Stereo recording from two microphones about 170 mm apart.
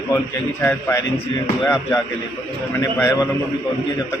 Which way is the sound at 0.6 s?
10° left (ahead or behind).